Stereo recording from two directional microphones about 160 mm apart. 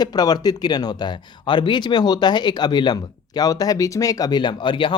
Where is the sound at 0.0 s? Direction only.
25° left (ahead or behind).